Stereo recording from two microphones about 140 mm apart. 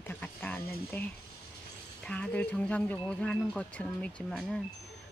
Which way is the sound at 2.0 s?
10° left (ahead or behind).